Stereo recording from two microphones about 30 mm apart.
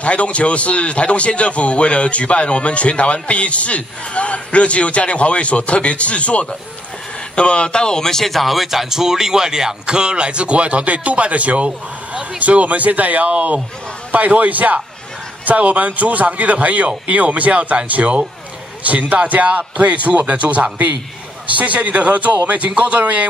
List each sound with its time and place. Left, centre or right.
0.0 s a man's voice: left; by 8.3 s centre
8.3 s speech: centre
9.8 s a man's voice: right
11.6 s a sound: right
12.4 s a man's voice: right